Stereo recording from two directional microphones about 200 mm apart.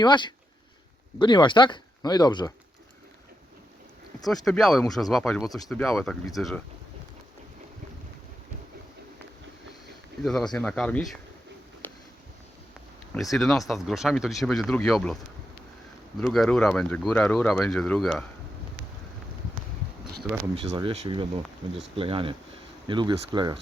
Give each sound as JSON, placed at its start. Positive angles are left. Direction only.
{"t": 0.0, "sound": "speech", "side_deg": 20}
{"t": 4.3, "sound": "speech", "side_deg": 0}
{"t": 10.2, "sound": "speech", "side_deg": 0}
{"t": 13.3, "sound": "speech", "side_deg": 0}
{"t": 16.2, "sound": "speech", "side_deg": 0}
{"t": 20.6, "sound": "speech", "side_deg": -30}